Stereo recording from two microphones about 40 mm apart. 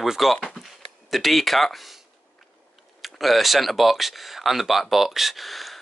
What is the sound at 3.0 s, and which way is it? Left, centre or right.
Speech, centre.